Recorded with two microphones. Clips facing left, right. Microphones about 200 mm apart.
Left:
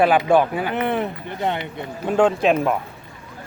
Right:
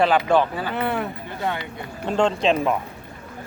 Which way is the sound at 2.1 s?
10° left (ahead or behind).